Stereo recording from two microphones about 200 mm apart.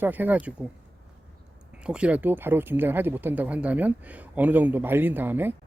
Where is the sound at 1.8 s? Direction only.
5° right (ahead or behind).